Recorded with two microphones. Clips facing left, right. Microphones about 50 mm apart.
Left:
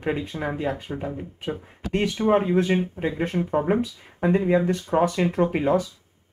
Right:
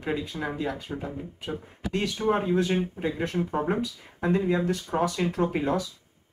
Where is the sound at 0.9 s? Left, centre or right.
Left.